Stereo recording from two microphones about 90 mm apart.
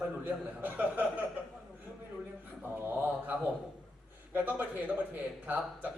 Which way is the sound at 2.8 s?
20° right (ahead or behind).